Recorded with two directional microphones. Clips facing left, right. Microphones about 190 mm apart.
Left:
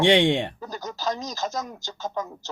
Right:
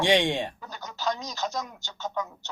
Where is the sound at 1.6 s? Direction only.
40° left (ahead or behind).